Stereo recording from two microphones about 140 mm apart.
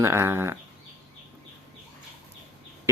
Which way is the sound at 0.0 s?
20° right (ahead or behind).